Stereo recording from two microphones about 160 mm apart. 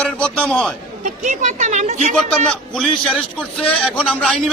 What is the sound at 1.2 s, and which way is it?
Speech, 50° right (ahead or behind).